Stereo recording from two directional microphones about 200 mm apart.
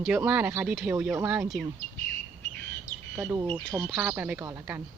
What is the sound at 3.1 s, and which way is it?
Speech, 15° right (ahead or behind).